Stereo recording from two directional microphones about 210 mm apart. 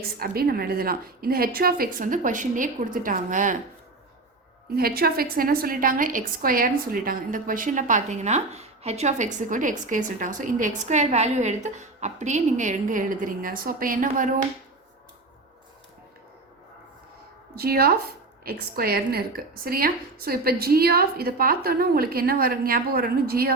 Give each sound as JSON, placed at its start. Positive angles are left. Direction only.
{"t": 0.0, "sound": "a woman's voice", "side_deg": -45}
{"t": 4.8, "sound": "a woman's voice", "side_deg": -45}
{"t": 17.5, "sound": "a woman's voice", "side_deg": -50}